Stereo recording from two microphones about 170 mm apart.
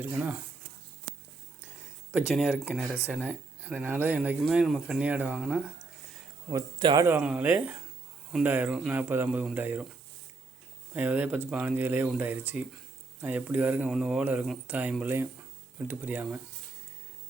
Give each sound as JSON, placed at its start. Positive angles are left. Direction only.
{"t": 0.2, "sound": "speech", "side_deg": -10}
{"t": 1.6, "sound": "speech", "side_deg": -5}
{"t": 6.5, "sound": "speech", "side_deg": -25}
{"t": 7.0, "sound": "speech", "side_deg": -15}
{"t": 10.9, "sound": "speech", "side_deg": -10}